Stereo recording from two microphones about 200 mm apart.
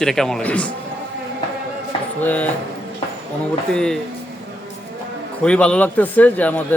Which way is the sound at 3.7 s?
5° left (ahead or behind).